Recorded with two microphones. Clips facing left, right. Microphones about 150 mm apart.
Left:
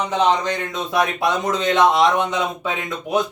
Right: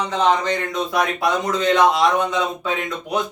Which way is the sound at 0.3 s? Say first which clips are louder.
Right 1 dB; 20° left (ahead or behind).